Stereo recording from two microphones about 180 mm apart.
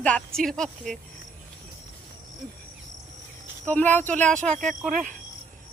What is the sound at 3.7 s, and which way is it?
Speech, 10° left (ahead or behind).